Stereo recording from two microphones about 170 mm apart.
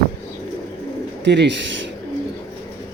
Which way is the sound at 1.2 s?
90° right.